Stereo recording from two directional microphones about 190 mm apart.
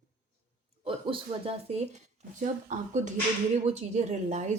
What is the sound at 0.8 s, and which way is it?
A woman's voice, 30° right (ahead or behind).